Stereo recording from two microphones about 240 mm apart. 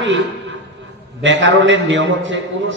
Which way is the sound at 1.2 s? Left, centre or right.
Right.